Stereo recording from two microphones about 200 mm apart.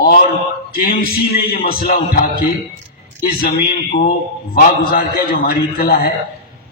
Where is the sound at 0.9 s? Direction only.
50° left (ahead or behind).